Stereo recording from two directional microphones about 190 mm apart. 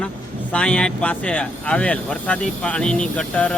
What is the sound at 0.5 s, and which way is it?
Speech, 5° left (ahead or behind).